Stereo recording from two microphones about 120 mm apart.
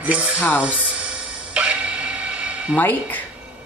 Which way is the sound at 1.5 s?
10° right (ahead or behind).